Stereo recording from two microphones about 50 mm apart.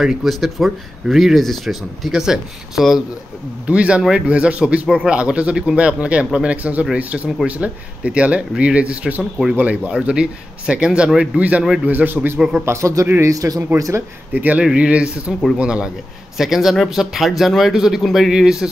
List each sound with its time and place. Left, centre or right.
0.0 s speech: centre
3.6 s a man's voice: right
12.4 s speech: centre
12.6 s a man's voice: right
14.3 s a man's voice: right
14.6 s speech: centre
16.3 s speech: centre
18.3 s speech: centre